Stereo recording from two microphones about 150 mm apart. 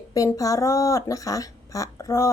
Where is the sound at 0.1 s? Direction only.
20° left (ahead or behind).